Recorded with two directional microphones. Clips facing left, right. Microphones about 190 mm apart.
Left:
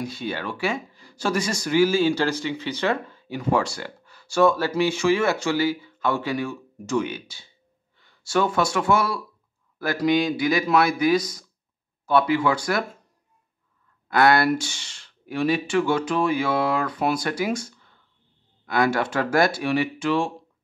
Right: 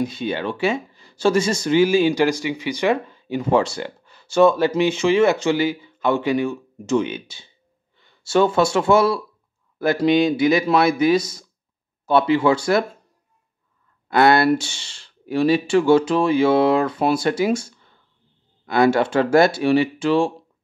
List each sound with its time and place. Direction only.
0.0 s speech: 20° right (ahead or behind)
14.0 s speech: 25° right (ahead or behind)
18.7 s speech: 25° right (ahead or behind)